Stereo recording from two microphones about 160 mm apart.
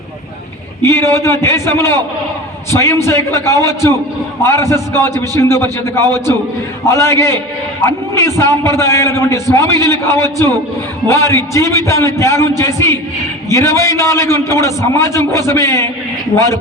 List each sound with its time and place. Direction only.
0.8 s a man's voice: 15° left (ahead or behind)